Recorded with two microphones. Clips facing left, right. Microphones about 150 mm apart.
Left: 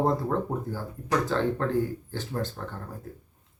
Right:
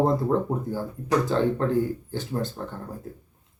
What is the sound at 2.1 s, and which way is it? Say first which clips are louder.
Speech: right 3 dB; 15° right (ahead or behind).